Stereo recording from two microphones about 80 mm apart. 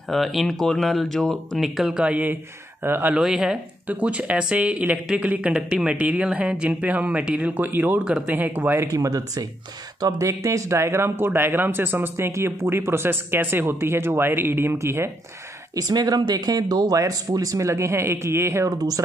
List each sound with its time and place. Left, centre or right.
0.1 s speech: centre
1.6 s speech: centre
2.0 s speech: right
3.2 s speech: centre
3.8 s speech: centre
8.8 s speech: right
12.3 s speech: right
15.7 s speech: right
18.7 s speech: right